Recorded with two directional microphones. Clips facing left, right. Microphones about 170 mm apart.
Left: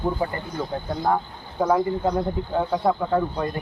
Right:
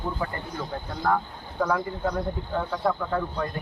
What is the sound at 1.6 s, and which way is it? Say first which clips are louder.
Speech: left 5 dB; 30° left (ahead or behind).